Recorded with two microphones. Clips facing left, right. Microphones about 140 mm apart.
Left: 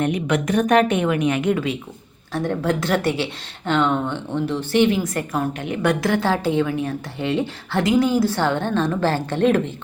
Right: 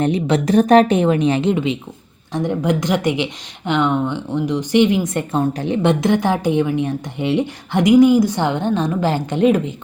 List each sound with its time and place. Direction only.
0.0 s a woman's voice: 30° right (ahead or behind); by 9.7 s 10° right (ahead or behind)